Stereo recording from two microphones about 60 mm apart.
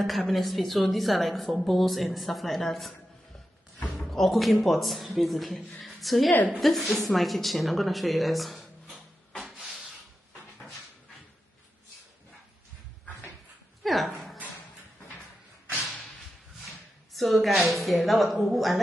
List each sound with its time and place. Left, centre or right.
0.0 s a woman's voice: centre
3.9 s a woman's voice: centre
9.4 s a sound: centre
13.8 s dog: centre
17.1 s a woman's voice: centre